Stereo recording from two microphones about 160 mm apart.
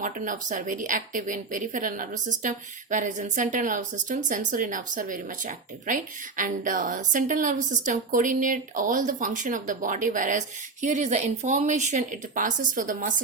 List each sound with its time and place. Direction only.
0.0 s a woman's voice: 55° right (ahead or behind)